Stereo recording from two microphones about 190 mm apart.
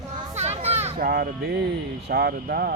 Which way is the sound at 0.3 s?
35° right (ahead or behind).